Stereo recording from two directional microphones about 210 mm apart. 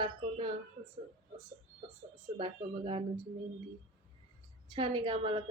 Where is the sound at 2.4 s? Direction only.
25° right (ahead or behind).